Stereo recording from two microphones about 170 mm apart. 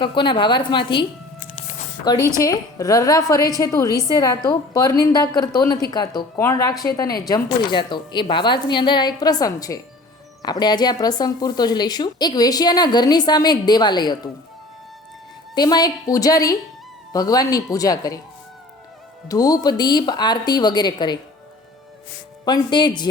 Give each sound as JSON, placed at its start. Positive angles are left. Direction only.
{"t": 0.0, "sound": "speech", "side_deg": 30}
{"t": 2.1, "sound": "speech", "side_deg": 25}
{"t": 15.5, "sound": "speech", "side_deg": 25}
{"t": 19.3, "sound": "speech", "side_deg": 20}
{"t": 22.4, "sound": "speech", "side_deg": 25}